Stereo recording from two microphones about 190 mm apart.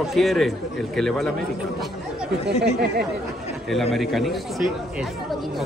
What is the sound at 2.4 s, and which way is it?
Speech, 60° right (ahead or behind).